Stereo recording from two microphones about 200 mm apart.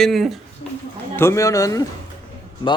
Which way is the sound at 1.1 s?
15° left (ahead or behind).